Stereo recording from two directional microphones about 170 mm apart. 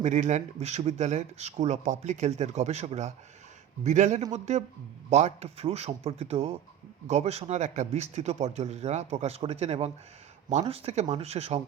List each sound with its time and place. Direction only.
0.0 s a man's voice: 45° right (ahead or behind)